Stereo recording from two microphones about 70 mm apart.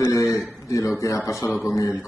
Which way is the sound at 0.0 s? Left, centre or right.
Left.